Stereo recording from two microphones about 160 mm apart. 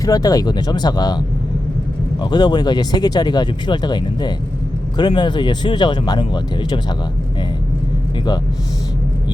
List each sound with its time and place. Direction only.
0.0 s speech: 25° left (ahead or behind)
2.3 s speech: 25° left (ahead or behind)